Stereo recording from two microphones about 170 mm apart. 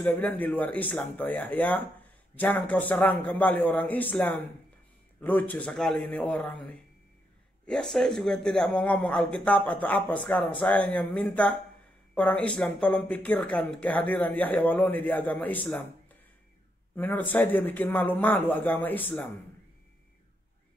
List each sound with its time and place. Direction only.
0.0 s a man's voice: 10° left (ahead or behind)
16.9 s speech: 10° left (ahead or behind)